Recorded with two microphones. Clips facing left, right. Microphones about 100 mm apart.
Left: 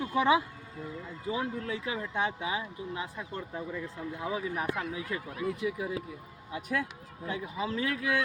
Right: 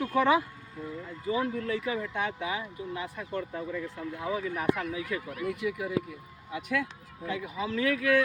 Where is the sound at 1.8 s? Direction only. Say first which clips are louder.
Right 1 dB; 30° left (ahead or behind).